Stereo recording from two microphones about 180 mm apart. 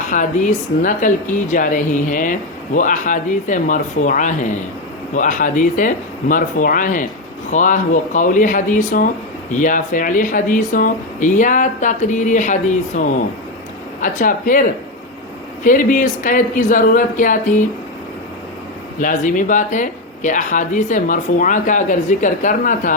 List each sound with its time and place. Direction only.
0.1 s speech: 45° left (ahead or behind)
18.9 s speech: 45° left (ahead or behind)